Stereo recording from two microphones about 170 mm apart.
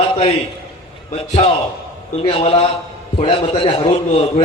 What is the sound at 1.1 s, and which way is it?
A man's voice, 35° left (ahead or behind).